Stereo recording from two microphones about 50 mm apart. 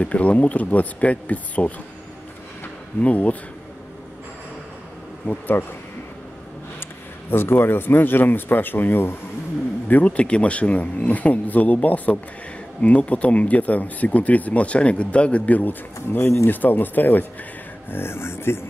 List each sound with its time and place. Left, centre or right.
0.0 s speech: left
3.0 s speech: left
5.2 s speech: left
7.2 s speech: left
9.8 s speech: left
17.9 s speech: left